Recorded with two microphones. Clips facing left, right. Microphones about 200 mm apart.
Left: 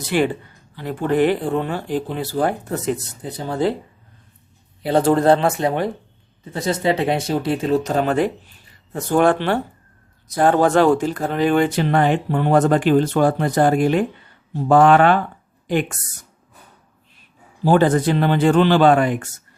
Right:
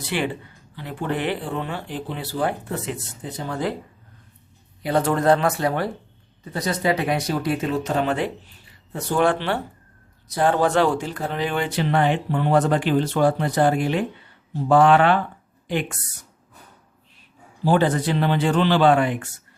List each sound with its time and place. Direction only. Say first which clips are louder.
0.0 s speech: left 6 dB; 45° left (ahead or behind)
4.8 s a woman's voice: left 5 dB; 30° left (ahead or behind); by 16.0 s 45° left (ahead or behind)
17.7 s speech: left 4 dB; 50° left (ahead or behind)